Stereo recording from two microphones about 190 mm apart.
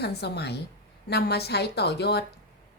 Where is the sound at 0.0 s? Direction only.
60° left (ahead or behind).